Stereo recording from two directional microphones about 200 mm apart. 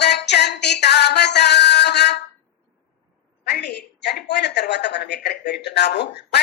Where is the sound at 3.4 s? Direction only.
55° left (ahead or behind).